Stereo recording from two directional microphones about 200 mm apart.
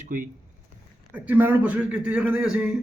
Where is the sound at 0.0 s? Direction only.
40° right (ahead or behind).